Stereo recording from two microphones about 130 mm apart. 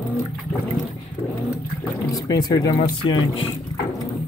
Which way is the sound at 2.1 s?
30° left (ahead or behind).